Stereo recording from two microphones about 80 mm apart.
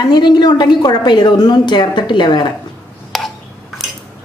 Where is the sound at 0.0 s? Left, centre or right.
Left.